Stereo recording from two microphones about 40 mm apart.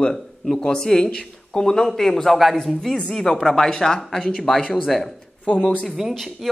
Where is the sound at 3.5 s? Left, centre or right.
Centre.